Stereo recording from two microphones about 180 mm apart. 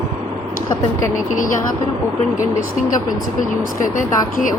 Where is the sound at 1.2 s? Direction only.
45° left (ahead or behind).